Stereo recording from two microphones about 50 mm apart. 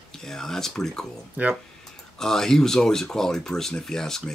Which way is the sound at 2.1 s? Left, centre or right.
Centre.